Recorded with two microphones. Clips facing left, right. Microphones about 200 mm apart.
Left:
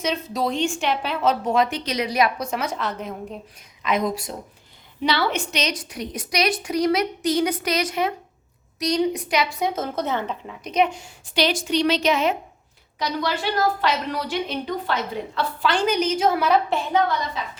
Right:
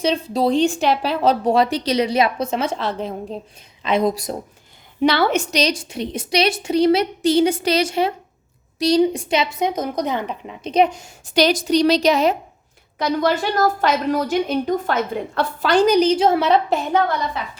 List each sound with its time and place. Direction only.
0.0 s a woman's voice: 30° right (ahead or behind)
5.0 s a woman's voice: 50° right (ahead or behind); by 10.7 s 15° right (ahead or behind)
10.7 s a woman's voice: 35° right (ahead or behind)
13.0 s a woman's voice: 50° right (ahead or behind); by 16.6 s 25° right (ahead or behind)
16.6 s a woman's voice: 45° right (ahead or behind)